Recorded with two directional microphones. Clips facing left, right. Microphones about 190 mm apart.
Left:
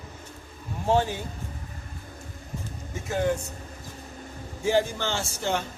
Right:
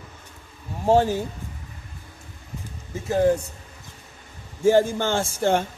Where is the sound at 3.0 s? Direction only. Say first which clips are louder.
Right 7 dB; 35° right (ahead or behind).